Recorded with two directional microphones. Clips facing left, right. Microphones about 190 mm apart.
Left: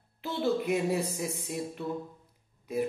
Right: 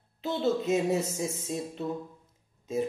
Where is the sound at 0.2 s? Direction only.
20° right (ahead or behind).